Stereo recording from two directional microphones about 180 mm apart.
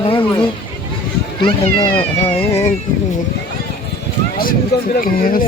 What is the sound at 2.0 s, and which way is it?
Speech, 30° left (ahead or behind).